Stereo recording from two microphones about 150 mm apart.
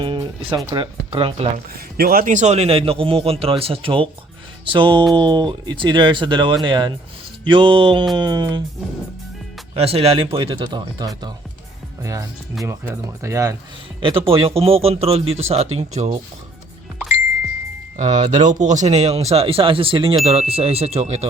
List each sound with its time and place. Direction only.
0.0 s speech: 35° right (ahead or behind)
1.7 s a man's voice: 85° right; by 8.6 s 30° right (ahead or behind)
9.7 s a man's voice: 45° right (ahead or behind); by 11.3 s 25° right (ahead or behind)
12.6 s speech: 15° right (ahead or behind)
14.0 s a man's voice: 35° right (ahead or behind)
18.3 s speech: 55° right (ahead or behind)